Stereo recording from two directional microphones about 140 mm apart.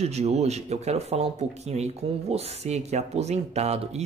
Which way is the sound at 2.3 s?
50° right (ahead or behind).